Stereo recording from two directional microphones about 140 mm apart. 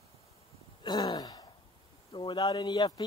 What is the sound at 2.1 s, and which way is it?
Speech, 35° left (ahead or behind).